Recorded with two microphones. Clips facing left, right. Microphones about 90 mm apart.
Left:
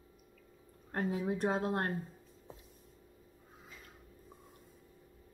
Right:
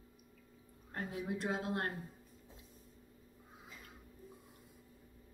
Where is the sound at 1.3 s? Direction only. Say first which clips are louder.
Left 3 dB; 40° left (ahead or behind).